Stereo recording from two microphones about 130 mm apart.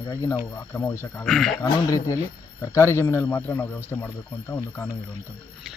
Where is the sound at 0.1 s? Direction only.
25° left (ahead or behind).